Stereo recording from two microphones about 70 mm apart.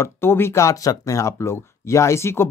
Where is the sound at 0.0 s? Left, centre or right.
Left.